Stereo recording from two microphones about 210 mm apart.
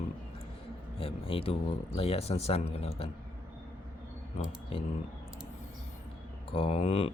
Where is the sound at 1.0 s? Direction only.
25° left (ahead or behind).